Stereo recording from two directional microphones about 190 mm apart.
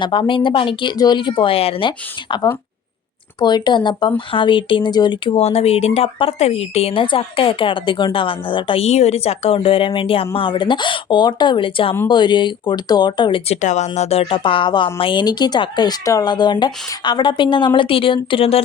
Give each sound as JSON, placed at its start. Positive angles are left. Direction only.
{"t": 0.0, "sound": "speech", "side_deg": 25}
{"t": 13.6, "sound": "speech", "side_deg": 40}